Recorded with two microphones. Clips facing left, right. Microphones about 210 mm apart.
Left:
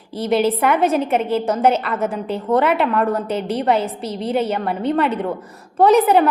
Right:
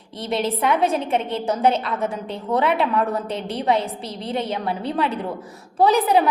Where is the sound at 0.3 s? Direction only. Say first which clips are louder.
Left 5 dB; centre (ahead or behind).